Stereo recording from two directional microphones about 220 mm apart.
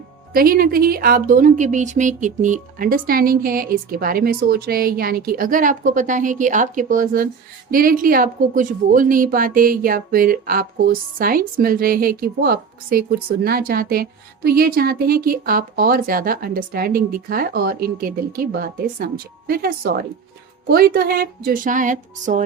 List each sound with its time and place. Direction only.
0.3 s speech: 40° right (ahead or behind)